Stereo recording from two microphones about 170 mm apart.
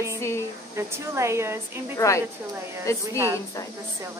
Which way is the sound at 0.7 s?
15° right (ahead or behind).